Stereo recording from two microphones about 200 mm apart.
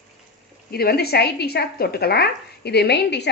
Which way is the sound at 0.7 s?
50° left (ahead or behind).